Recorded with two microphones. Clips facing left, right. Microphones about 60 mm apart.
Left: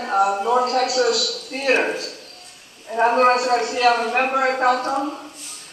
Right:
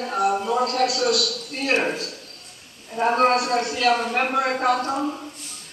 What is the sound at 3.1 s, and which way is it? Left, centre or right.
A man's voice, left.